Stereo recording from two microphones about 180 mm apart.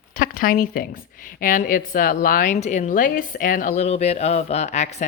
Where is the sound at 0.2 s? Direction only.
50° left (ahead or behind).